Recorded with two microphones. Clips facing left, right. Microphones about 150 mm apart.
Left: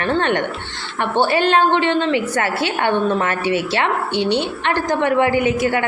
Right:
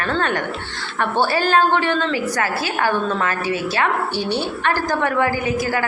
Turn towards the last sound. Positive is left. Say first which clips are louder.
# left 4 dB
turn(degrees=25)  # may be behind; listen again after turning